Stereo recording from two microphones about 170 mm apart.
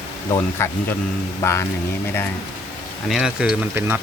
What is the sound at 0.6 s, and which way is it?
Music, 15° left (ahead or behind).